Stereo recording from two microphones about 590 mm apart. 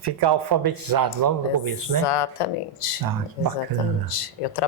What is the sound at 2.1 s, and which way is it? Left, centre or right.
Speech, left.